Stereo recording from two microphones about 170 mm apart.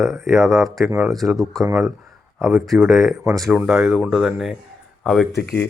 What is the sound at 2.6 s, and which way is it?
Speech, centre (ahead or behind).